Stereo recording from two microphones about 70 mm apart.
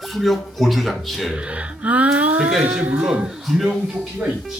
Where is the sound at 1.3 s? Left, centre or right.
Centre.